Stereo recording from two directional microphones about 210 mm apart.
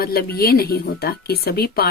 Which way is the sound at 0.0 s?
45° left (ahead or behind).